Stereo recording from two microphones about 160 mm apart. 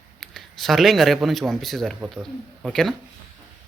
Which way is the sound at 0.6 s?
Centre (ahead or behind).